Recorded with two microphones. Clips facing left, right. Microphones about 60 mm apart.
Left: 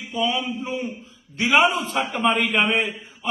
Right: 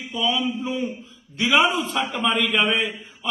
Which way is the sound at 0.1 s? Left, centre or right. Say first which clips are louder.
Even; left.